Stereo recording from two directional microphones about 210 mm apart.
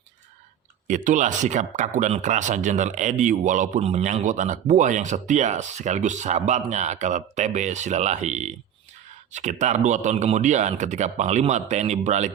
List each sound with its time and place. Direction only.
0.9 s speech: 35° right (ahead or behind)